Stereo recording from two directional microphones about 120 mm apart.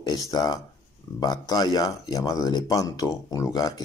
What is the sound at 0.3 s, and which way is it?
Speech, 35° left (ahead or behind).